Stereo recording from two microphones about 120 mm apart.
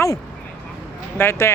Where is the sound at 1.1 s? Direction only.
20° left (ahead or behind).